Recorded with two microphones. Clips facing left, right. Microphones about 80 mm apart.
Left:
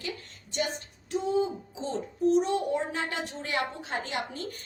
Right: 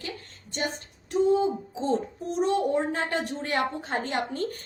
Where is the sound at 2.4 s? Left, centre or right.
Right.